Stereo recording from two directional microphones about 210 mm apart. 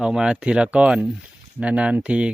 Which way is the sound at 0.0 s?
5° right (ahead or behind).